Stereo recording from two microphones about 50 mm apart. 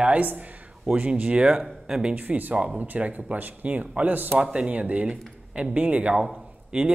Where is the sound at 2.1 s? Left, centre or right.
Right.